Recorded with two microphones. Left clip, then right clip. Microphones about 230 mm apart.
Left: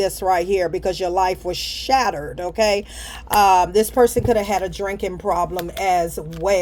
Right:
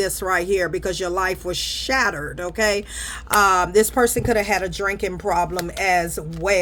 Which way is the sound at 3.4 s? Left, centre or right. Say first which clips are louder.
Left 2 dB; right.